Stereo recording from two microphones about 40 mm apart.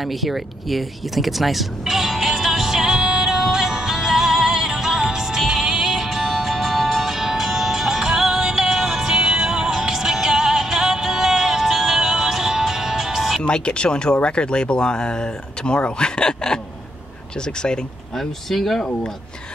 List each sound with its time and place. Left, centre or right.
0.0 s a sound: centre
5.1 s music: centre
13.4 s speech: left
18.1 s speech: centre